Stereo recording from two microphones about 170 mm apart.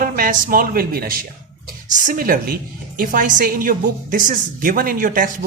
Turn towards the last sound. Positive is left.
turn(degrees=-55)  # may be behind; listen again after turning